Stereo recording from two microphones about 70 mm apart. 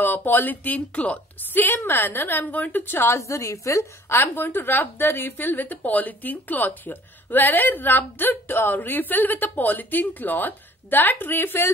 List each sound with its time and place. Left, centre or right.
0.0 s a woman's voice: left
3.2 s a woman's voice: left
4.2 s a woman's voice: left